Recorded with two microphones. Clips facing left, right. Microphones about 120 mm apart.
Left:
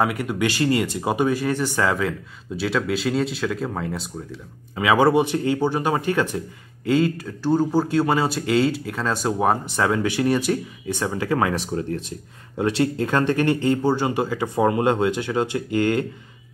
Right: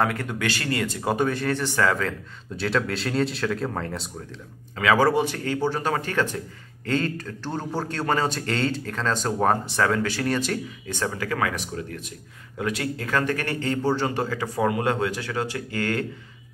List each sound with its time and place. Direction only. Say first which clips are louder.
0.0 s a man's voice: left 3 dB; 10° left (ahead or behind)
4.7 s a man's voice: left 3 dB; 20° left (ahead or behind)